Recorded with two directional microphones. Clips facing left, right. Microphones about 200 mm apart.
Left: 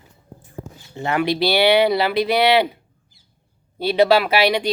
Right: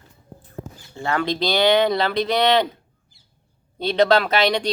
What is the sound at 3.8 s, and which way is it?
Speech, 10° left (ahead or behind).